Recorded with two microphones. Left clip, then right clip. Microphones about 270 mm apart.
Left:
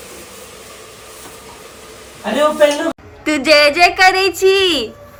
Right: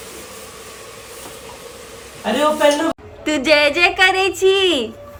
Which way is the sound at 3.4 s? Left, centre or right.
Centre.